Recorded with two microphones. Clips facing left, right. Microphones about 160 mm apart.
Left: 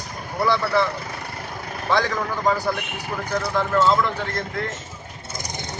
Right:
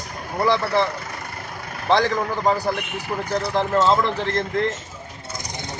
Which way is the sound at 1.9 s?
30° right (ahead or behind).